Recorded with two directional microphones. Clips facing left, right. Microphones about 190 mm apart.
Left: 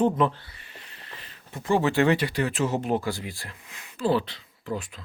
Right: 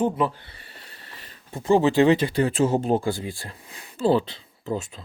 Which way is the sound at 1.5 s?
25° right (ahead or behind).